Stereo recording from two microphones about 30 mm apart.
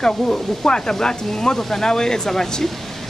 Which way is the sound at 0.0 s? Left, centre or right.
Centre.